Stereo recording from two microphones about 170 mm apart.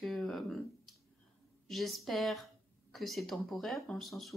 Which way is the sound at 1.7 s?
Centre (ahead or behind).